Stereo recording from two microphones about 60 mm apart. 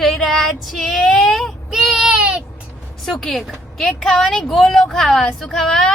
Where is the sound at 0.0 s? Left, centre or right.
Centre.